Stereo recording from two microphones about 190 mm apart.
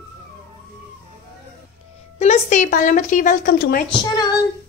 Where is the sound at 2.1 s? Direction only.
35° left (ahead or behind).